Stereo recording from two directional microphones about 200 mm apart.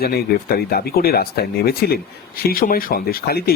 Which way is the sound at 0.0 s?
50° left (ahead or behind).